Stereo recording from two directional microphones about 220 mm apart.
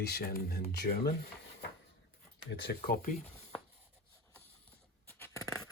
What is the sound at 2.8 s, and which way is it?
Speech, 35° left (ahead or behind).